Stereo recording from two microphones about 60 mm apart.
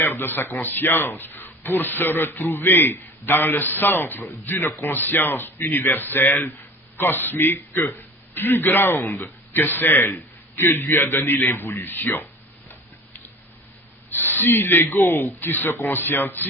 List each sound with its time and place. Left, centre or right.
0.0 s speech: left
14.1 s speech: left